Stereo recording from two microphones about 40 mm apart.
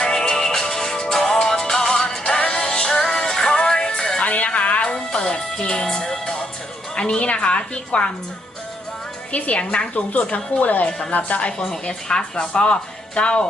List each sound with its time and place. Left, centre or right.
0.0 s music: centre
4.2 s music: left
4.9 s music: centre
6.9 s speech: left
9.3 s speech: left
10.6 s speech: left
11.7 s speech: left